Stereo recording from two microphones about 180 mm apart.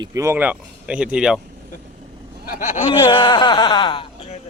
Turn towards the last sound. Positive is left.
turn(degrees=30)  # may be behind; listen again after turning